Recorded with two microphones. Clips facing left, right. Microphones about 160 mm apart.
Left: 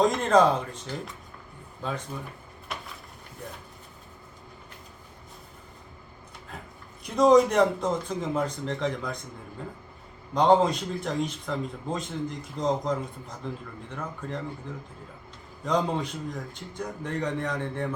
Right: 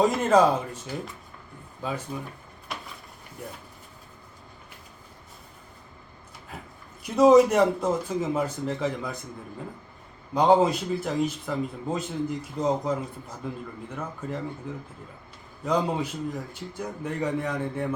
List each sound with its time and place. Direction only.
0.0 s speech: 5° right (ahead or behind)
2.7 s a sound: centre (ahead or behind)
3.4 s speech: 10° right (ahead or behind)
6.5 s speech: centre (ahead or behind)
10.3 s speech: 5° right (ahead or behind)
15.6 s speech: 5° right (ahead or behind)